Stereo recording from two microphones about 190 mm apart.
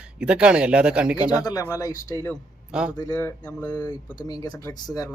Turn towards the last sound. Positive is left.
turn(degrees=20)  # may be behind; listen again after turning